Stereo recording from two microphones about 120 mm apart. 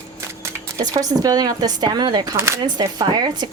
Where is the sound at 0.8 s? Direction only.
30° right (ahead or behind).